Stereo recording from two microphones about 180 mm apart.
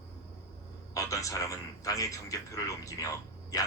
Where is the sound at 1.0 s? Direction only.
20° left (ahead or behind).